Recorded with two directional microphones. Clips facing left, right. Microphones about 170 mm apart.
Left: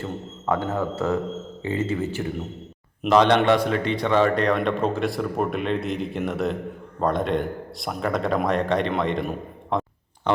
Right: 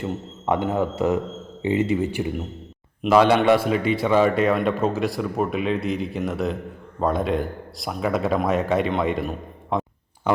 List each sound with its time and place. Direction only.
0.0 s a man's voice: 15° right (ahead or behind)